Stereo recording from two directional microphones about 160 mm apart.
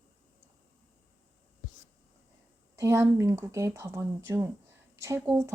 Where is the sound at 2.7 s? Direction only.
20° right (ahead or behind).